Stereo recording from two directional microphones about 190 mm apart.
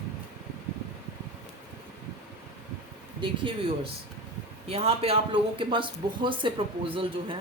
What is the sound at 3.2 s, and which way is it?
A man's voice, 25° right (ahead or behind).